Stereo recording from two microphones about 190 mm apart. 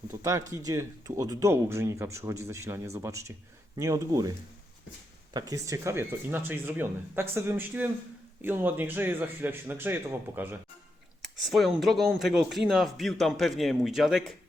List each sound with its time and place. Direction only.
0.2 s speech: 15° right (ahead or behind)
5.3 s speech: 20° right (ahead or behind)
11.2 s speech: centre (ahead or behind)